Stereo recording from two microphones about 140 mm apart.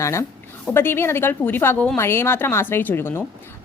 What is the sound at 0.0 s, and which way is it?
A woman's voice, 20° left (ahead or behind).